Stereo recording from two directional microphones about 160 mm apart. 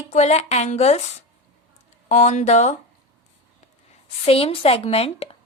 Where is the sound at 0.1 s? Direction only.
45° left (ahead or behind).